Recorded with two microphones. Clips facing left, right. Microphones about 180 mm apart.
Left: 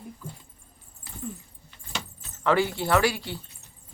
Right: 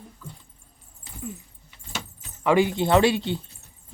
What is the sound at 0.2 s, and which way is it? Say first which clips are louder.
Keys jangling: left 2 dB; 15° left (ahead or behind).